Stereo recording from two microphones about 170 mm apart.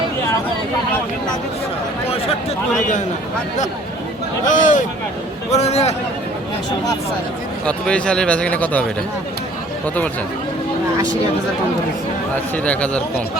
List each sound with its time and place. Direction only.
4.4 s a man's voice: 50° left (ahead or behind)
7.6 s a man's voice: 5° left (ahead or behind)
9.8 s a man's voice: 10° left (ahead or behind)
12.6 s a man's voice: 5° left (ahead or behind)